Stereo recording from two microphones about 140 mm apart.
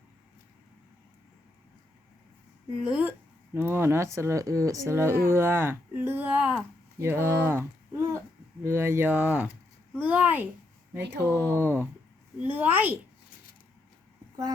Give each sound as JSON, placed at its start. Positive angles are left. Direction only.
{"t": 2.8, "sound": "a woman's voice", "side_deg": -10}